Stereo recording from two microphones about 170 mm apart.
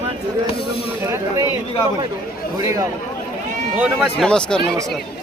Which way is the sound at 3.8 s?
Centre (ahead or behind).